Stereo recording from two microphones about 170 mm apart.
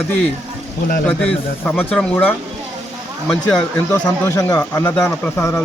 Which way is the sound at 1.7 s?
10° left (ahead or behind).